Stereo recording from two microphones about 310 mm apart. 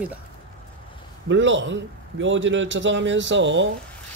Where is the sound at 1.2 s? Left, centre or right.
Right.